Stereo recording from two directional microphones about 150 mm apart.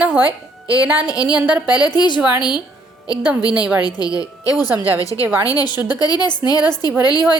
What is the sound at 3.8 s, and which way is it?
A woman's voice, 25° left (ahead or behind).